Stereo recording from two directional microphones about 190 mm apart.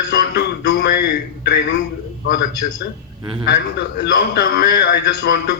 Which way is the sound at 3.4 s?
60° left (ahead or behind).